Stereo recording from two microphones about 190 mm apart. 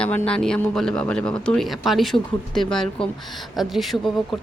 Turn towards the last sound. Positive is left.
turn(degrees=0)  # may be behind; listen again after turning